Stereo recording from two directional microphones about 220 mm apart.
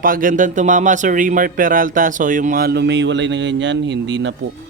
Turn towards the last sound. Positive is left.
turn(degrees=-55)  # may be behind; listen again after turning